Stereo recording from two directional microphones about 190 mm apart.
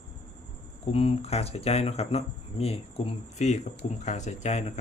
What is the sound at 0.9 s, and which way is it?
Speech, 30° left (ahead or behind).